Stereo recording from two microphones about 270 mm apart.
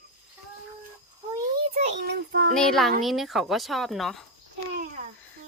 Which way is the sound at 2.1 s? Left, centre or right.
Right.